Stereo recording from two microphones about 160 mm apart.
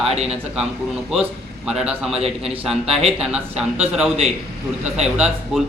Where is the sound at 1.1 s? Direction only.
5° right (ahead or behind).